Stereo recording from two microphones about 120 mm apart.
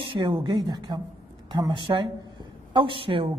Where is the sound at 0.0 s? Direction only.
45° right (ahead or behind).